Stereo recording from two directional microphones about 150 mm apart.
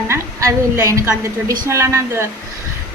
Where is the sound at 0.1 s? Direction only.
20° right (ahead or behind).